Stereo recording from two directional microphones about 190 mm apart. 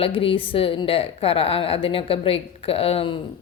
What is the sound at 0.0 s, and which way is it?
A woman's voice, 30° left (ahead or behind).